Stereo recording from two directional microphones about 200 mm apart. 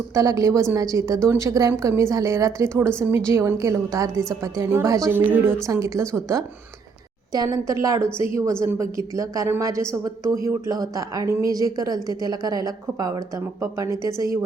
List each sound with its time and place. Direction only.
0.1 s a woman's voice: 15° right (ahead or behind)